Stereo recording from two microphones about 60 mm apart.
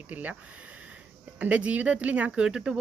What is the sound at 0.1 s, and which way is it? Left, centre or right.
Speech, right.